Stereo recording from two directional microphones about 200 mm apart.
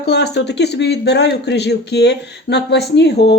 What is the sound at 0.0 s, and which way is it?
Speech, 55° left (ahead or behind).